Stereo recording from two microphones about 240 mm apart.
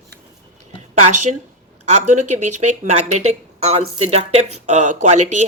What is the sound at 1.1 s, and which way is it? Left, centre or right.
A woman's voice, right.